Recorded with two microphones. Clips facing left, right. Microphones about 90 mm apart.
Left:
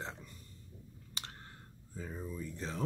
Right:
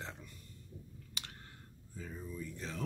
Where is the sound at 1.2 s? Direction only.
35° left (ahead or behind).